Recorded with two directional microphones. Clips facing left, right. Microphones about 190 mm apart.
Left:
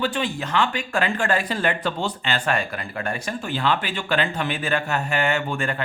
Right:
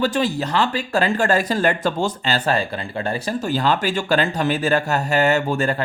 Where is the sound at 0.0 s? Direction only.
40° right (ahead or behind).